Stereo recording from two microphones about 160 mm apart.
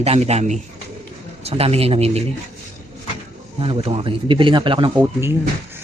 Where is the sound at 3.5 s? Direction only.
35° right (ahead or behind).